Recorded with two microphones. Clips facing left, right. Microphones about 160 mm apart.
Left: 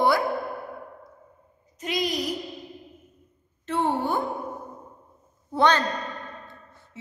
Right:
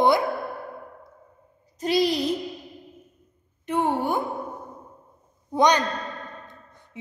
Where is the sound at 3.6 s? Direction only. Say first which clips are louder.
Right 1 dB; 15° right (ahead or behind).